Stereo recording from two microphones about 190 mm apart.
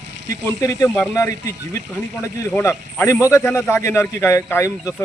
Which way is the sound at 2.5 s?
10° left (ahead or behind).